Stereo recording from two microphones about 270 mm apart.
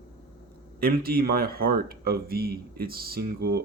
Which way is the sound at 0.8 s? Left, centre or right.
Right.